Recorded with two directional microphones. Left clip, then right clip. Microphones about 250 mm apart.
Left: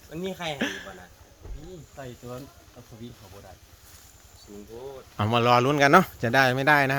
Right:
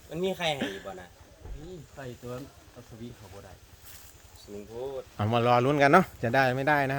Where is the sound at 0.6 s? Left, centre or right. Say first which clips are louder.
Left 4 dB; centre.